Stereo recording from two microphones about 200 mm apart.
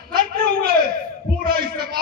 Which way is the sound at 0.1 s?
45° right (ahead or behind).